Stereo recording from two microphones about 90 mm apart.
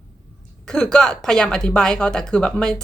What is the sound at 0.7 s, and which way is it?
A woman's voice, 10° left (ahead or behind).